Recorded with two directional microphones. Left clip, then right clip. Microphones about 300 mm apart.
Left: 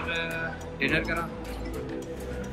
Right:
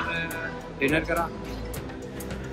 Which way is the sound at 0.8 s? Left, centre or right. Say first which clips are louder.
Right 2 dB; centre.